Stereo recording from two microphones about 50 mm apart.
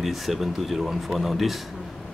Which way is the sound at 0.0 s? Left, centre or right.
Centre.